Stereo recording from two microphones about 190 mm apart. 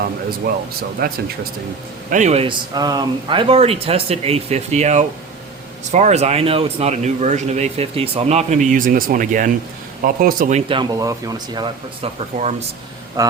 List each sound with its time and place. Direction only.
1.0 s speech: 50° right (ahead or behind)
2.0 s a man's voice: 40° right (ahead or behind)
10.7 s speech: 20° right (ahead or behind)
12.4 s a man's voice: 35° right (ahead or behind)
13.2 s speech: 20° right (ahead or behind)